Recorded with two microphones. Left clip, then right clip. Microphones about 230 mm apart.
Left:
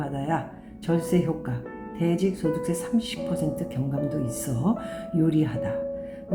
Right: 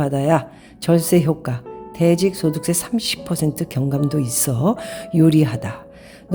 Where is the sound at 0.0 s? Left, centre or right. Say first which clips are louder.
Right 10 dB; right.